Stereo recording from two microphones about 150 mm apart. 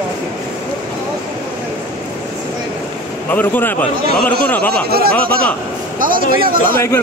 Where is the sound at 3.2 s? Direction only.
10° left (ahead or behind).